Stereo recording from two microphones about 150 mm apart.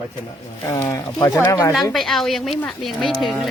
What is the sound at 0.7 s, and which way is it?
Speech, 20° left (ahead or behind).